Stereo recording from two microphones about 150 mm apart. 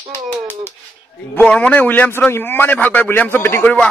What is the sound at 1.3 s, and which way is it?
A man's voice, 10° left (ahead or behind).